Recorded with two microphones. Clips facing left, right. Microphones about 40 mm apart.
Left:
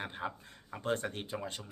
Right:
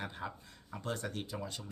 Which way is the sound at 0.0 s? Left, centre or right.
Left.